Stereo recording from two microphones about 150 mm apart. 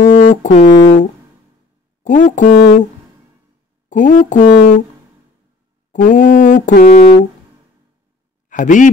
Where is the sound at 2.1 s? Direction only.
55° left (ahead or behind).